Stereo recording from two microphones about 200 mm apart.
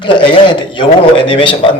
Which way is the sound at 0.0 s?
25° left (ahead or behind).